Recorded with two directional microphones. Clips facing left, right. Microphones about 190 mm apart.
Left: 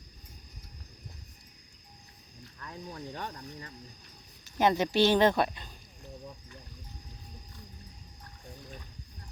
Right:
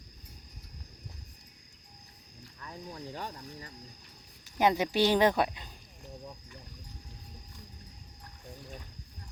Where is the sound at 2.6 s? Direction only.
10° right (ahead or behind).